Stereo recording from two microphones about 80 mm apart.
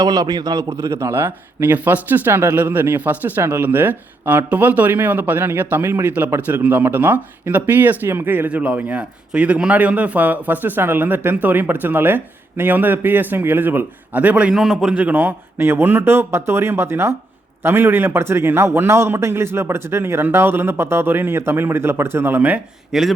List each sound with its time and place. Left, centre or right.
0.0 s a man's voice: right
0.7 s speech: right; by 14.5 s centre
14.5 s a man's voice: centre
15.0 s a man's voice: right
22.9 s speech: centre